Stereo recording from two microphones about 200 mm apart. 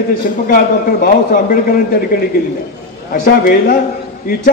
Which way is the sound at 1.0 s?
45° left (ahead or behind).